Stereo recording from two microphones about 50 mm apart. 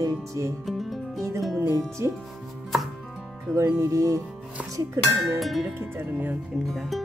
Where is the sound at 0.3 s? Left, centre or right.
Right.